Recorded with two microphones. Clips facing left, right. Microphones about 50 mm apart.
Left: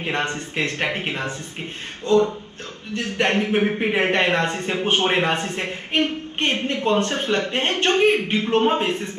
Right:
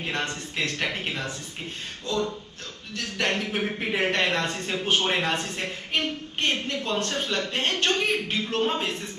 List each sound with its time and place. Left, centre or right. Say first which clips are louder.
0.0 s speech: left 5 dB; left
2.0 s a sound: left 10 dB; left
2.9 s speech: left 6 dB; left